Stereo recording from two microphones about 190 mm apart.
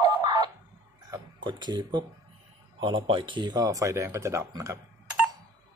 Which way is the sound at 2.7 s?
25° right (ahead or behind).